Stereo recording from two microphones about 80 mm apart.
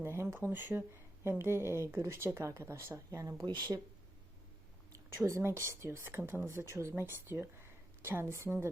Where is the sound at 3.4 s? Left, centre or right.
Right.